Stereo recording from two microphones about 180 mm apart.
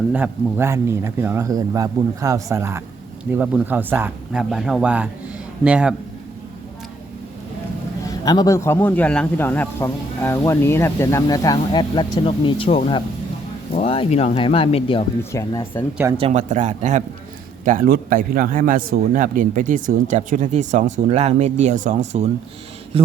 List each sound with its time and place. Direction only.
0.1 s speech: 10° right (ahead or behind)
8.0 s speech: 20° left (ahead or behind)
15.2 s speech: 15° left (ahead or behind)
16.1 s speech: 35° right (ahead or behind)
17.7 s a man's voice: 55° right (ahead or behind); by 23.1 s 30° right (ahead or behind)